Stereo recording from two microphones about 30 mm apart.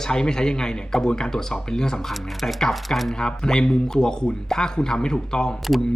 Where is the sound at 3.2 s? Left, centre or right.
Left.